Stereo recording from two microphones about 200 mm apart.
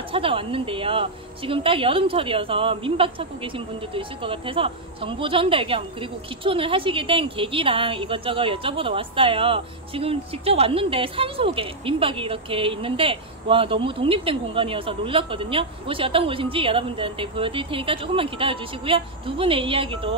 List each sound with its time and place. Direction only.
0.1 s a woman's voice: 25° right (ahead or behind)